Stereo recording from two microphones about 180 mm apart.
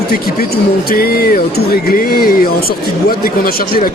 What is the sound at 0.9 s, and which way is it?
A man's voice, 55° left (ahead or behind).